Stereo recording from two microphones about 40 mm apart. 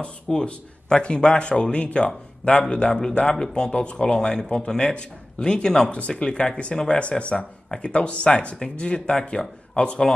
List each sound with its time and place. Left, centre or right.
0.0 s speech: left
5.9 s speech: left